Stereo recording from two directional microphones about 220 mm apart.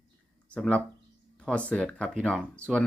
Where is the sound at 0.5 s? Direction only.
5° left (ahead or behind).